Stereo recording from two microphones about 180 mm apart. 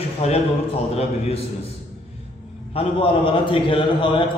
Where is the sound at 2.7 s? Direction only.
30° left (ahead or behind).